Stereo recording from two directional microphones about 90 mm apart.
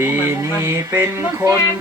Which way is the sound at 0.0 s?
25° right (ahead or behind).